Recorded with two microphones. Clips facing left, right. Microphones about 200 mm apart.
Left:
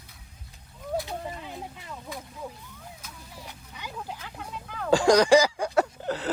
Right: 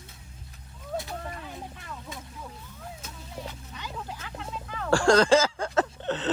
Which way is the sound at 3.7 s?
10° left (ahead or behind).